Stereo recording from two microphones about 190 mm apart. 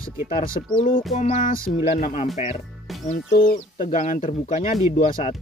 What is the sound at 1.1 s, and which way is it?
Speech, 45° left (ahead or behind).